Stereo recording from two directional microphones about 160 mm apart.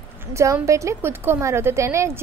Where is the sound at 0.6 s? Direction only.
20° right (ahead or behind).